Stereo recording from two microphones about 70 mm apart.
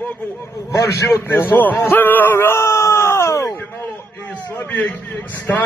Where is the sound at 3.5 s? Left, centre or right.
Left.